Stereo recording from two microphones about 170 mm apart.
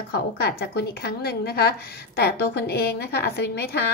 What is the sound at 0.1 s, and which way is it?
A woman's voice, 70° left (ahead or behind).